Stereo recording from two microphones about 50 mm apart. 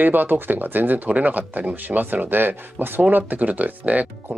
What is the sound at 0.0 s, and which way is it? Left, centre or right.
Speech, right.